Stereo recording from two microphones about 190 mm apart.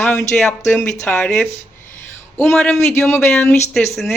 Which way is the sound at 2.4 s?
Centre (ahead or behind).